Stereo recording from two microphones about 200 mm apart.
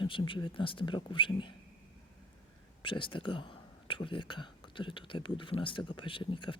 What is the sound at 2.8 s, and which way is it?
Speech, 25° left (ahead or behind).